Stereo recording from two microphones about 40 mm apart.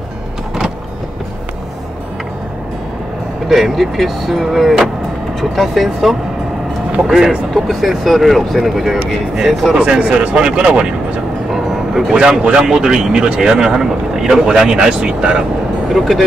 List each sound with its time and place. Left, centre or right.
3.4 s speech: centre
7.5 s speech: centre
9.8 s speech: right
11.5 s vehicle: centre
12.1 s speech: centre
14.9 s speech: right
15.9 s speech: centre